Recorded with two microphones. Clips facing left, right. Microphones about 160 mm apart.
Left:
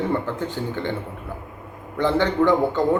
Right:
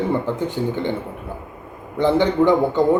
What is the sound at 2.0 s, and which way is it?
Speech, 15° right (ahead or behind).